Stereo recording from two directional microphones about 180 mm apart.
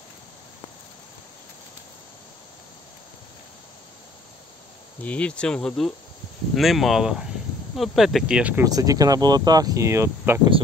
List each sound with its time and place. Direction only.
5.0 s speech: 5° left (ahead or behind)
8.6 s speech: 20° right (ahead or behind)